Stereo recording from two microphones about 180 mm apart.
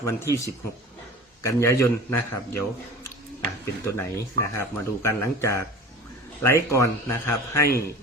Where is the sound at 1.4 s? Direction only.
15° left (ahead or behind).